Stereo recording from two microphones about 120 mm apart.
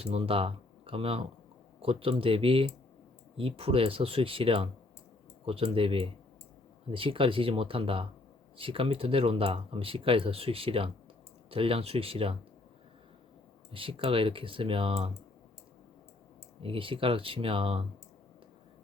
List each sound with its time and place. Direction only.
0.0 s speech: 55° right (ahead or behind)
13.7 s speech: 50° right (ahead or behind)
16.6 s speech: 50° right (ahead or behind)